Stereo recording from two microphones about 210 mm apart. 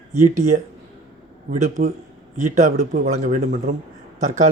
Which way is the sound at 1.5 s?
35° right (ahead or behind).